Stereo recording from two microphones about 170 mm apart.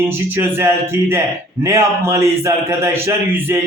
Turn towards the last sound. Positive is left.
turn(degrees=-15)  # may be behind; listen again after turning